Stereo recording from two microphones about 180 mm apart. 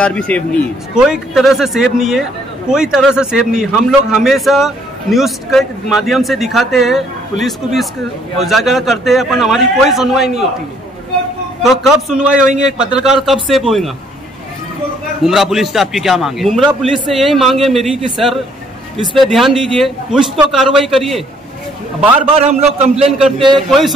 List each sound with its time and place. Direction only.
0.0 s a man's voice: 5° left (ahead or behind)
0.9 s a man's voice: 5° right (ahead or behind)
11.6 s a man's voice: centre (ahead or behind)
15.2 s a man's voice: centre (ahead or behind)
22.3 s a man's voice: 40° right (ahead or behind)
23.5 s a man's voice: centre (ahead or behind)